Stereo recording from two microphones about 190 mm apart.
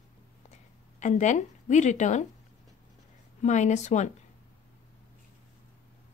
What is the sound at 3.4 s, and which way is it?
Speech, 40° left (ahead or behind).